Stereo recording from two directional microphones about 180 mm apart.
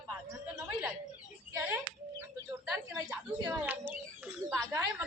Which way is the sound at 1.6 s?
10° right (ahead or behind).